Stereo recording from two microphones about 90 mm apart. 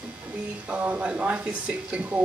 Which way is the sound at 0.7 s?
15° right (ahead or behind).